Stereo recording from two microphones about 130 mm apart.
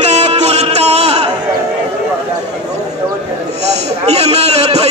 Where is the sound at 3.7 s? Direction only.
55° right (ahead or behind).